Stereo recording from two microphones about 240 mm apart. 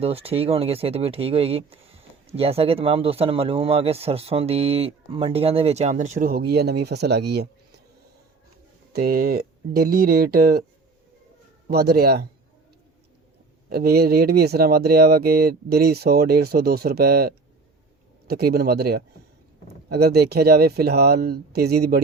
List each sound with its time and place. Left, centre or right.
0.0 s speech: right
8.9 s speech: right
11.7 s speech: right
13.7 s speech: right